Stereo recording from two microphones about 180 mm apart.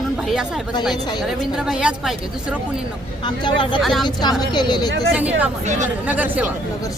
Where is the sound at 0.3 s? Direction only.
5° right (ahead or behind).